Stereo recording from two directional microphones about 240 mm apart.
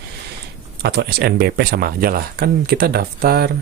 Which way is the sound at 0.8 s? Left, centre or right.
Right.